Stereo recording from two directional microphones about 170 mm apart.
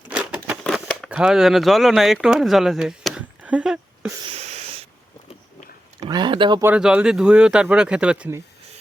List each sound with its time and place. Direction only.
0.1 s scissors: 5° right (ahead or behind)
0.6 s speech: 5° left (ahead or behind)
4.2 s a sound: 35° right (ahead or behind)
6.1 s speech: 25° right (ahead or behind)
6.6 s speech: 10° right (ahead or behind)